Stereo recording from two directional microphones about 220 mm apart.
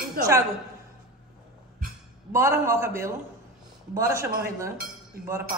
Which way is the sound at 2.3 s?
10° right (ahead or behind).